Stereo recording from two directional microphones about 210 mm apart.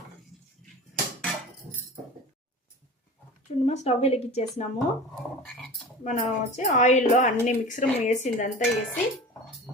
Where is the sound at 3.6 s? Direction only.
30° left (ahead or behind).